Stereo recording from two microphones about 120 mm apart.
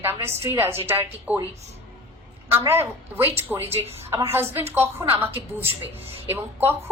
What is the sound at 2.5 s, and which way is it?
A woman's voice, 20° right (ahead or behind).